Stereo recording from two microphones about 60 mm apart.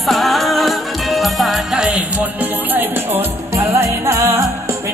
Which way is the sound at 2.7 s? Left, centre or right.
Right.